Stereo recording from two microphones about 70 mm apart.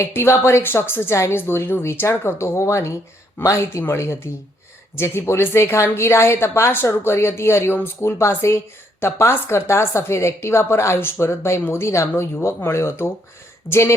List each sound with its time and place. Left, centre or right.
0.0 s a woman's voice: left